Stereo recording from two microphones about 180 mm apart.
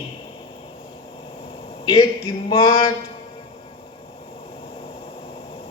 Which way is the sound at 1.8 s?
30° left (ahead or behind).